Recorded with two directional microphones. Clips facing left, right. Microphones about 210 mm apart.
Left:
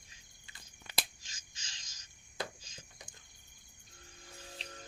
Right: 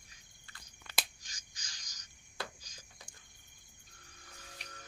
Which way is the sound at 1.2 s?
25° left (ahead or behind).